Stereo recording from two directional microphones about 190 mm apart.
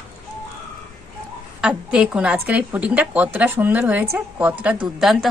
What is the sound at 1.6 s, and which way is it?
A woman's voice, 5° right (ahead or behind).